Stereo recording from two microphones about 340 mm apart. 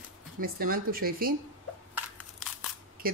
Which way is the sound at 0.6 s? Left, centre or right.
Right.